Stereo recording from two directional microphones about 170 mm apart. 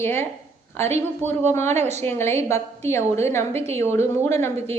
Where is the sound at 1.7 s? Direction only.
40° right (ahead or behind).